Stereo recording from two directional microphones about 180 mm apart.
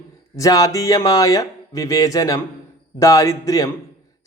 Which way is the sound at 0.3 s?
20° left (ahead or behind).